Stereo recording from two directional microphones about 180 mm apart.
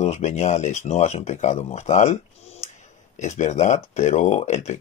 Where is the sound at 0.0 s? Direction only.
40° left (ahead or behind).